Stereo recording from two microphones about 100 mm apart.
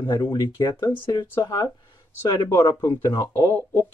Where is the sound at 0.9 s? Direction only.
55° left (ahead or behind).